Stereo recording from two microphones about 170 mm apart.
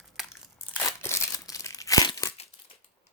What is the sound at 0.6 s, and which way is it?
Crumpling, 10° left (ahead or behind).